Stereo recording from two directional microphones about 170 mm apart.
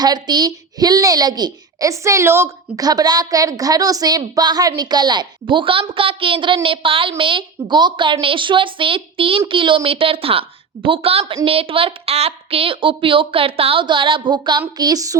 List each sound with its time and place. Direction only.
0.0 s a child's voice: 25° right (ahead or behind)